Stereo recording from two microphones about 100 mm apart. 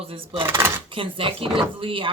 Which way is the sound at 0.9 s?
60° right (ahead or behind).